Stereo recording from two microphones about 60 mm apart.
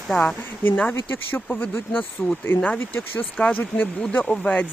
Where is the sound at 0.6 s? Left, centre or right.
Left.